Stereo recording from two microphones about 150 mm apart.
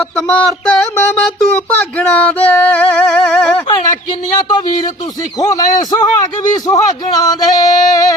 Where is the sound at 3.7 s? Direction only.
30° left (ahead or behind).